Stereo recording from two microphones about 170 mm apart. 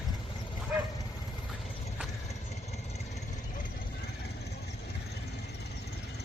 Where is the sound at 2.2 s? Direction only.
40° left (ahead or behind).